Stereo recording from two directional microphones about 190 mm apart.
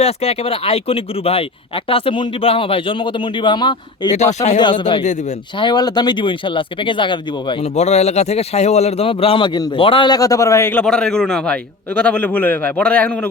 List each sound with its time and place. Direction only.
0.0 s speech: 30° left (ahead or behind)
4.1 s speech: 35° left (ahead or behind)
4.6 s speech: 25° left (ahead or behind)
7.8 s a man's voice: 35° left (ahead or behind); by 13.3 s 10° left (ahead or behind)